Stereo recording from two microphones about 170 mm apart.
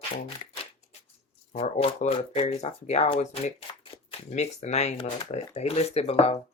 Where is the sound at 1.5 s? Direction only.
40° left (ahead or behind).